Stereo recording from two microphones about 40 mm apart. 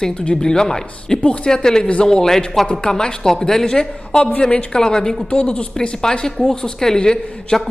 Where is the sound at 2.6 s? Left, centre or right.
Left.